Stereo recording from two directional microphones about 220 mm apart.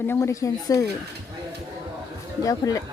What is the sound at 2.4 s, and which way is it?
Speech, 15° left (ahead or behind).